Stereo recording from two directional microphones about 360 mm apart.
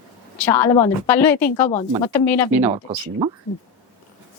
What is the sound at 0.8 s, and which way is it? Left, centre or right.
Speech, centre.